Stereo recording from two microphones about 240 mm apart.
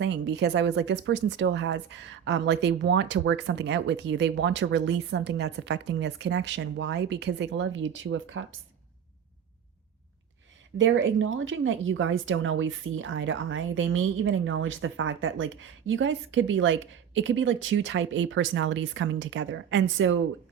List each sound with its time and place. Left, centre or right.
0.0 s a woman's voice: right
10.8 s a woman's voice: right